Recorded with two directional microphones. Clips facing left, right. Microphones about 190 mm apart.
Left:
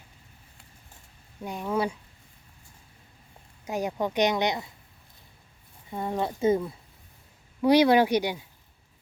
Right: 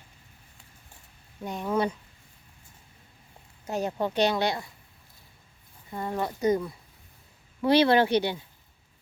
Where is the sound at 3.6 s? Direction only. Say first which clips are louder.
Even; 10° left (ahead or behind).